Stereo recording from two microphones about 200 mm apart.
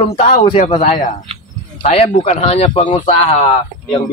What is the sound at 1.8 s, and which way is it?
Speech, 35° left (ahead or behind).